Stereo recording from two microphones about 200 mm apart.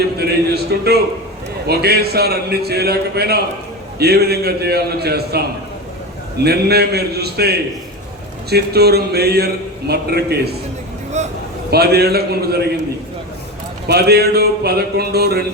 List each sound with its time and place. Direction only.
0.2 s a man's voice: 55° right (ahead or behind)
11.2 s a sound: 35° right (ahead or behind)
11.7 s a man's voice: 55° right (ahead or behind)
13.8 s a man's voice: 55° right (ahead or behind)